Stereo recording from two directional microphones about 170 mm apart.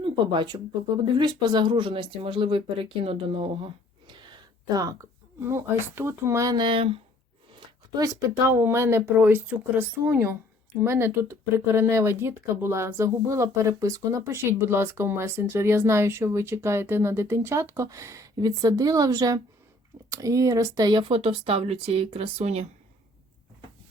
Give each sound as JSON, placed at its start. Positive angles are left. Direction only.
{"t": 0.0, "sound": "speech", "side_deg": -30}
{"t": 7.9, "sound": "speech", "side_deg": -20}